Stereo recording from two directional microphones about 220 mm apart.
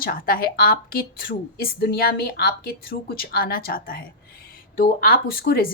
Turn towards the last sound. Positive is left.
turn(degrees=40)  # may be behind; listen again after turning